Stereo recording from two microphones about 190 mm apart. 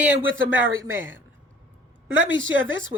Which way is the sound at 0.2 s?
90° right.